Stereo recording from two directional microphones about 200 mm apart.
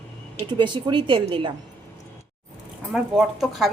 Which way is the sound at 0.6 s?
25° right (ahead or behind).